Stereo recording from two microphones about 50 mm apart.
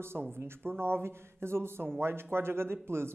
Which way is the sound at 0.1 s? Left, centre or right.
Right.